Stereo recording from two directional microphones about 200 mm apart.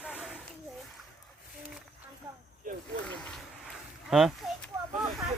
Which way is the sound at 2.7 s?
40° right (ahead or behind).